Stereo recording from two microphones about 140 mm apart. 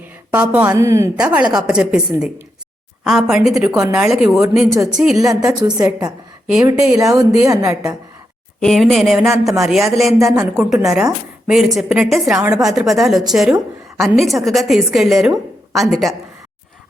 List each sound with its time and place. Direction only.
0.3 s a woman's voice: 10° right (ahead or behind)
0.9 s a woman's voice: 20° right (ahead or behind)
1.1 s a woman's voice: 10° right (ahead or behind)
3.0 s a woman's voice: centre (ahead or behind)
3.7 s a woman's voice: 20° right (ahead or behind)
3.9 s a woman's voice: centre (ahead or behind)
5.3 s a woman's voice: 25° right (ahead or behind)
7.7 s a woman's voice: 5° right (ahead or behind)